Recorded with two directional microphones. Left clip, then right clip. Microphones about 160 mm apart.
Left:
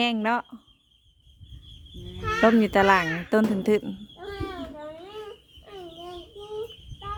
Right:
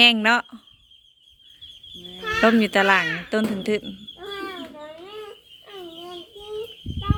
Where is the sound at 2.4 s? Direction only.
20° left (ahead or behind); by 3.9 s 35° left (ahead or behind).